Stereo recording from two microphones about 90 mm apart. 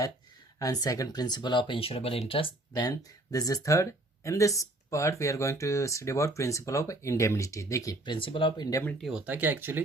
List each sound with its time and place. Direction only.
0.6 s speech: 45° left (ahead or behind); by 2.5 s 90° left
3.3 s speech: 40° left (ahead or behind)
8.0 s speech: 65° left (ahead or behind)
9.0 s speech: 5° right (ahead or behind)
9.2 s speech: 20° right (ahead or behind)